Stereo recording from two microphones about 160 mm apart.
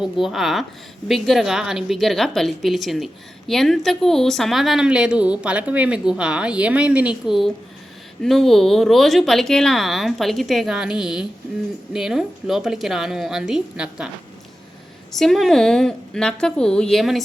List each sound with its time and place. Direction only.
0.0 s a woman's voice: centre (ahead or behind)
15.1 s a woman's voice: centre (ahead or behind)